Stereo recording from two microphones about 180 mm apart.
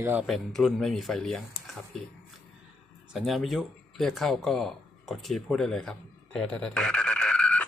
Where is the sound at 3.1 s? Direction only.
Centre (ahead or behind).